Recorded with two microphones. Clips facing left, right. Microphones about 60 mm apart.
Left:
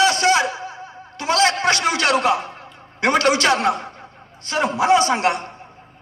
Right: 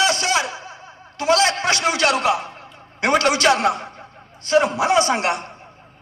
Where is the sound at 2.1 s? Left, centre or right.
Left.